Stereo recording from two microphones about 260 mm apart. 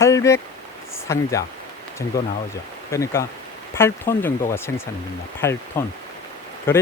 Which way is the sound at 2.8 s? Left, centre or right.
Centre.